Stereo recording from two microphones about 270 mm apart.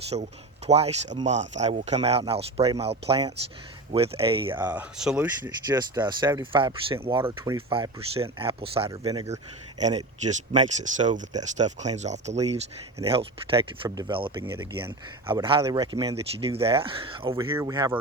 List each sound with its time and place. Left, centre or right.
0.1 s speech: centre
4.5 s speech: centre